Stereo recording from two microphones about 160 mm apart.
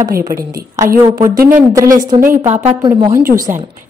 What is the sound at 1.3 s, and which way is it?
Speech, 55° right (ahead or behind).